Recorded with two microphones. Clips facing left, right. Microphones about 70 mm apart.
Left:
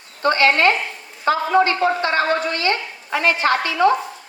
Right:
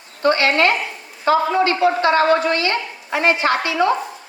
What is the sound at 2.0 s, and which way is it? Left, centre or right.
Speech, right.